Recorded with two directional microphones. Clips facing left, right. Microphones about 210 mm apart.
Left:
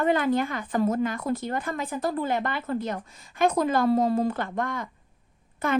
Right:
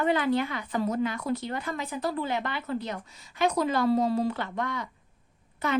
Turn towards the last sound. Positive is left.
turn(degrees=50)  # may be behind; listen again after turning